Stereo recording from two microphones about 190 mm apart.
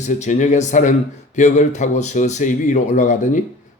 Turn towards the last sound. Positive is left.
turn(degrees=40)  # may be behind; listen again after turning